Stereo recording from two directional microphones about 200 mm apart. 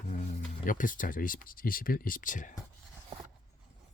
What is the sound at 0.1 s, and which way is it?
Speech, 40° left (ahead or behind).